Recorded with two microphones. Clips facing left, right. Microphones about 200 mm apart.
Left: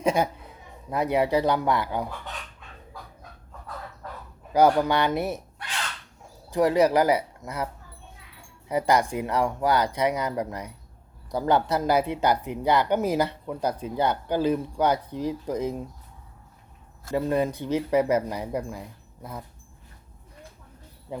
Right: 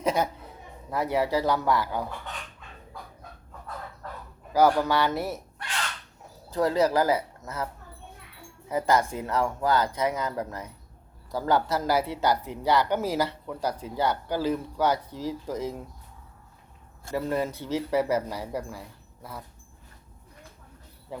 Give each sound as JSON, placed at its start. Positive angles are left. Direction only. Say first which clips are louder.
{"t": 0.0, "sound": "speech", "louder": "left 2 dB", "side_deg": 15}
{"t": 4.5, "sound": "speech", "louder": "left 2 dB", "side_deg": 15}
{"t": 6.5, "sound": "speech", "louder": "left 3 dB", "side_deg": 15}
{"t": 8.7, "sound": "speech", "louder": "left 2 dB", "side_deg": 15}
{"t": 17.1, "sound": "speech", "louder": "left 3 dB", "side_deg": 20}
{"t": 21.1, "sound": "speech", "louder": "left 3 dB", "side_deg": 20}